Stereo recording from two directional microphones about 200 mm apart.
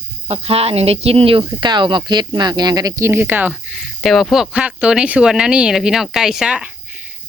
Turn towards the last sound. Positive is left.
turn(degrees=-5)  # may be behind; listen again after turning